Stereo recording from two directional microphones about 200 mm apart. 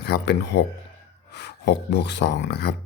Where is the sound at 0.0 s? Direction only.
55° left (ahead or behind).